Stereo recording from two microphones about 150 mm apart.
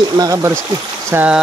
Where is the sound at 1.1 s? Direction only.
10° right (ahead or behind).